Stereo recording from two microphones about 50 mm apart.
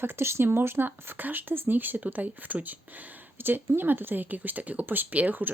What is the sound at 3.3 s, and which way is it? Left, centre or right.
Speech, right.